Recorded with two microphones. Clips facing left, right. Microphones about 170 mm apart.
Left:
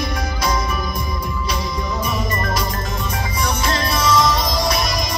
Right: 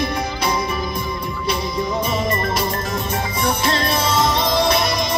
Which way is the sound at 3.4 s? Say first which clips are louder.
Right 1 dB; 25° right (ahead or behind).